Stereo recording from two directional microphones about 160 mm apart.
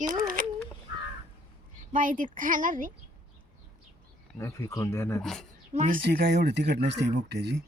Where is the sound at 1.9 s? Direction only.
55° right (ahead or behind).